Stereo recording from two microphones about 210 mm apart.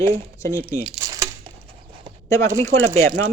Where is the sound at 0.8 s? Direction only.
15° right (ahead or behind).